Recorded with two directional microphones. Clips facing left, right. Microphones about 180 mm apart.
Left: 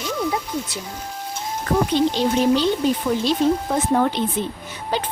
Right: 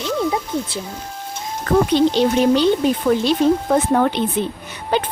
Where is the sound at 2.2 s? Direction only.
65° right (ahead or behind).